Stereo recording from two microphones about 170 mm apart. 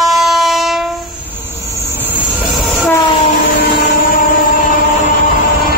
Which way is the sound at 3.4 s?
50° left (ahead or behind).